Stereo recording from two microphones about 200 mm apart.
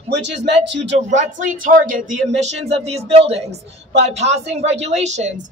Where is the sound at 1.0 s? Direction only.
35° right (ahead or behind).